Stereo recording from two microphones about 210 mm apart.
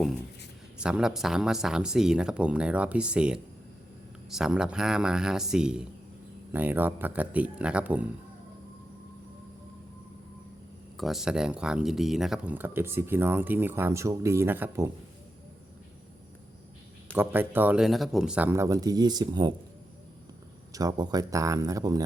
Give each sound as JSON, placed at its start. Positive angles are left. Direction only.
{"t": 0.8, "sound": "speech", "side_deg": -5}
{"t": 10.9, "sound": "speech", "side_deg": 0}
{"t": 17.2, "sound": "speech", "side_deg": -10}
{"t": 20.7, "sound": "speech", "side_deg": -20}